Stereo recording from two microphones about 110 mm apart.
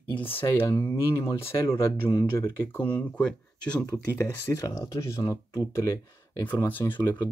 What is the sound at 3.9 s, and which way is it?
Speech, 30° left (ahead or behind).